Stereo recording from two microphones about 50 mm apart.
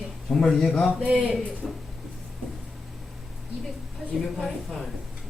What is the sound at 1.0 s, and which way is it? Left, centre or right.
Speech, right.